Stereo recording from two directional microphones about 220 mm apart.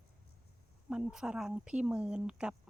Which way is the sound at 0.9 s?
5° right (ahead or behind).